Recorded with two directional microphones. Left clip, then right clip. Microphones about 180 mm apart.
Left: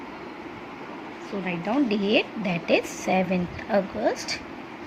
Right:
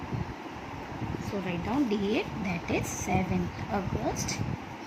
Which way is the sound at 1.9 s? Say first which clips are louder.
Left 7 dB; 35° left (ahead or behind).